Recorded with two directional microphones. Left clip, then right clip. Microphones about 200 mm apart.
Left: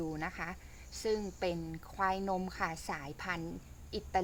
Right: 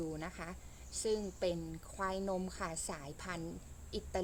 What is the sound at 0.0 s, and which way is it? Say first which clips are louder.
A woman's voice: left 4 dB; 30° left (ahead or behind).